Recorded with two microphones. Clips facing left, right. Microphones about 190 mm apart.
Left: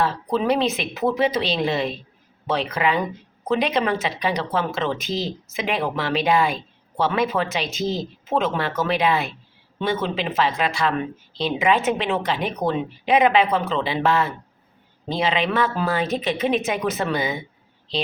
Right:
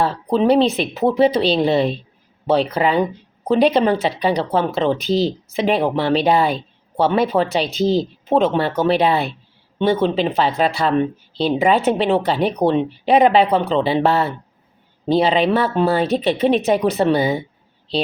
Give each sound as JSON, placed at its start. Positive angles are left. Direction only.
{"t": 0.0, "sound": "speech", "side_deg": -30}